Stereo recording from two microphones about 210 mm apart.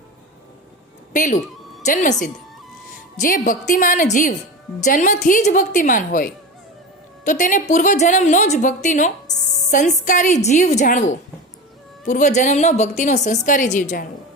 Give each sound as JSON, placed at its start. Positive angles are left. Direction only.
{"t": 1.1, "sound": "a woman's voice", "side_deg": 40}